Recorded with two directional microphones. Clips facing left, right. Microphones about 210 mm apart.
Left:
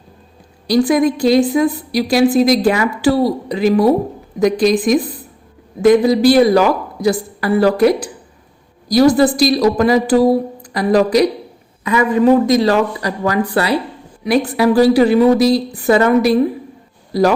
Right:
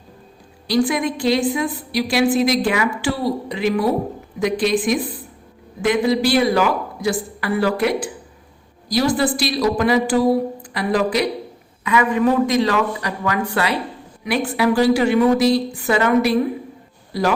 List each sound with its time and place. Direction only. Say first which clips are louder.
0.7 s a woman's voice: left 6 dB; 40° left (ahead or behind)